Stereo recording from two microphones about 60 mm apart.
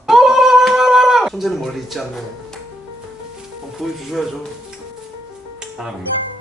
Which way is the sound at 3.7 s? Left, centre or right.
Centre.